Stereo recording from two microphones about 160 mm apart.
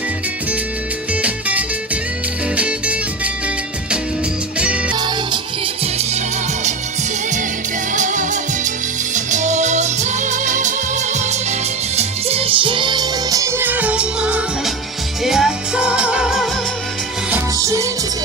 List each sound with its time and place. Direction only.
1.2 s music: 10° right (ahead or behind)
4.6 s music: 5° right (ahead or behind)
4.9 s music: 30° right (ahead or behind)
7.9 s music: 50° right (ahead or behind); by 16.5 s 5° right (ahead or behind)
17.3 s music: 20° right (ahead or behind)